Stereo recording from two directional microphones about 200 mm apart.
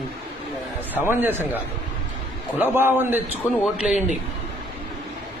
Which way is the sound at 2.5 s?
10° right (ahead or behind).